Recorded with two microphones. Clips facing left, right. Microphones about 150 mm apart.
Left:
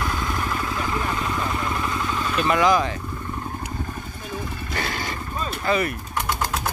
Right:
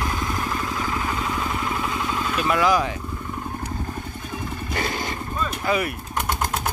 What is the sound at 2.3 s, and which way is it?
Speech, 5° right (ahead or behind).